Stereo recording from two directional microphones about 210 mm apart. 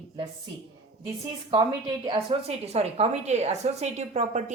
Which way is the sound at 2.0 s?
25° right (ahead or behind).